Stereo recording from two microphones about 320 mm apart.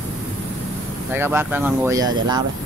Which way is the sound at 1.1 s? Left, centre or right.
Centre.